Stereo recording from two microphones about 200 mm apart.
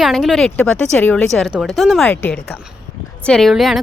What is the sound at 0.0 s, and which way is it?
Speech, centre (ahead or behind).